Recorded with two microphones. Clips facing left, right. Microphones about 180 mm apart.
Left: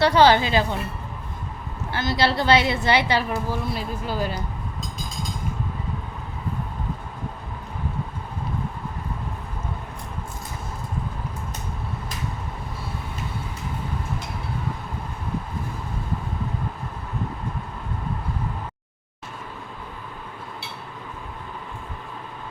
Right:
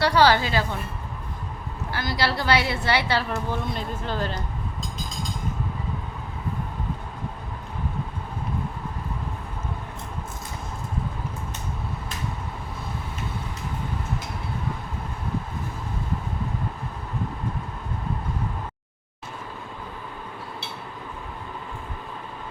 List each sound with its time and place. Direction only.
0.0 s a woman's voice: 20° left (ahead or behind)
1.9 s a woman's voice: 25° left (ahead or behind)